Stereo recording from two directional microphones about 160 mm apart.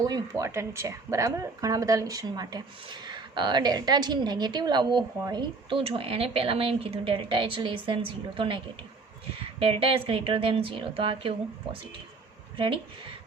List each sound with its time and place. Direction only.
0.0 s speech: 20° right (ahead or behind)